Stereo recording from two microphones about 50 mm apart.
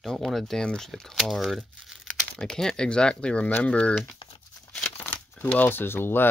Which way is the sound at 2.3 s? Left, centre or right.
Centre.